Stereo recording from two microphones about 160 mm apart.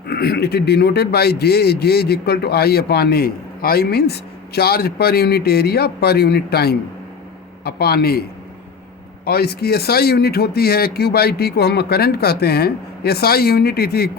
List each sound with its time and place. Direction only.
0.1 s a man's voice: 85° left
9.2 s speech: 75° left (ahead or behind)